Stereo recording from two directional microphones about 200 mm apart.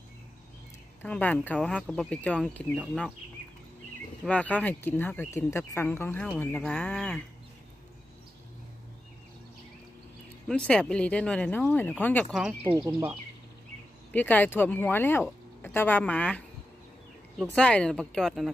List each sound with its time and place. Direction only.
1.0 s speech: 5° left (ahead or behind)
4.3 s speech: 5° left (ahead or behind)
10.5 s speech: 5° left (ahead or behind)
12.4 s speech: 5° right (ahead or behind)
12.7 s speech: 15° right (ahead or behind)
14.1 s speech: 10° left (ahead or behind)